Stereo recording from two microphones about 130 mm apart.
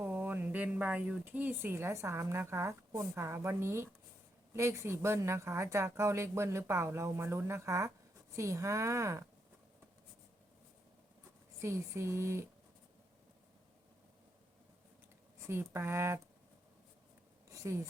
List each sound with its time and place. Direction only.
0.0 s a woman's voice: 15° right (ahead or behind)
11.6 s speech: 20° right (ahead or behind)
15.4 s speech: 20° right (ahead or behind)
17.5 s speech: 20° right (ahead or behind)